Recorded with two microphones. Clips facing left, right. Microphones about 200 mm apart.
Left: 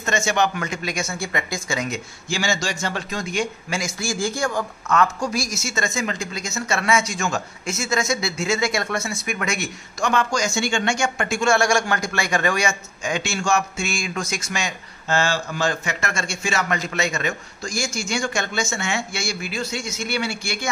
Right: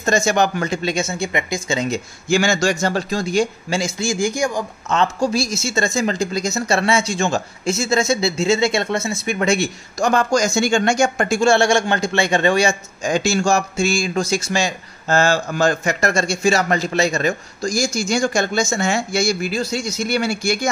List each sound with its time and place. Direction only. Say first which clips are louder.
0.0 s speech: right 4 dB; 35° right (ahead or behind)
2.2 s speech: right 8 dB; 50° right (ahead or behind); by 4.9 s 15° right (ahead or behind)
4.9 s speech: right 3 dB; 25° right (ahead or behind)